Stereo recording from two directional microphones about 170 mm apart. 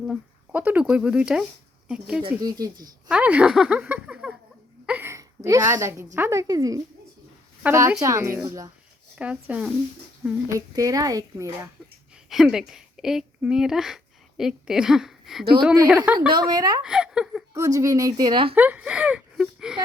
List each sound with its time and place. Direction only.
0.1 s speech: 10° right (ahead or behind)
2.4 s speech: 20° right (ahead or behind)
3.1 s speech: 5° right (ahead or behind)
4.9 s a sound: 15° right (ahead or behind)
6.1 s a woman's voice: 15° right (ahead or behind)
9.1 s a woman's voice: 5° right (ahead or behind)
10.2 s speech: 20° right (ahead or behind)
12.3 s a woman's voice: centre (ahead or behind)
16.1 s speech: 25° right (ahead or behind)
16.8 s speech: 5° right (ahead or behind)
17.5 s speech: 20° right (ahead or behind)
18.5 s speech: 10° right (ahead or behind)